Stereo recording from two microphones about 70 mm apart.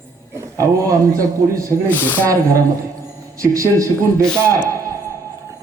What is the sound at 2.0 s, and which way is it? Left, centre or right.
Speech, left.